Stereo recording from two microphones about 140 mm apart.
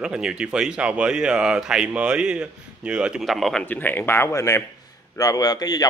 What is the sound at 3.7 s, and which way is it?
A man's voice, 15° left (ahead or behind).